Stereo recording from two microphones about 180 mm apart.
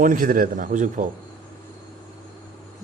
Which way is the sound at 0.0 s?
50° right (ahead or behind).